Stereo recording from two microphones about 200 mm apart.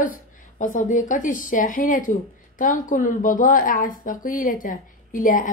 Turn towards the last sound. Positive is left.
turn(degrees=40)  # may be behind; listen again after turning